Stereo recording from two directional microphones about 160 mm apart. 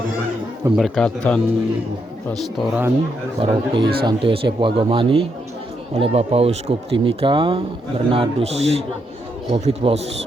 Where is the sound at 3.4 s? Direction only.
35° right (ahead or behind).